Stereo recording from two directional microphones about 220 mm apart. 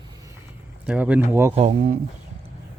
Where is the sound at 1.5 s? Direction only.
35° right (ahead or behind).